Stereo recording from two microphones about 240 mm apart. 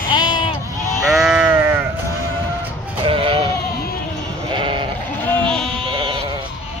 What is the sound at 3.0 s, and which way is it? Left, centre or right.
Sheep, right.